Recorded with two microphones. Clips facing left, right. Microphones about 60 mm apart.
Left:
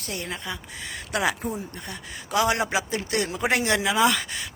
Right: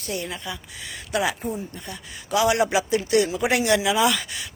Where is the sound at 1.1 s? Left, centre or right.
Left.